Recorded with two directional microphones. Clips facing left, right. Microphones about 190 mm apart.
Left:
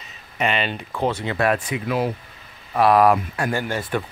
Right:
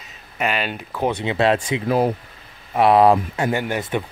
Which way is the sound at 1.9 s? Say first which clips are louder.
Right 4 dB; 40° right (ahead or behind).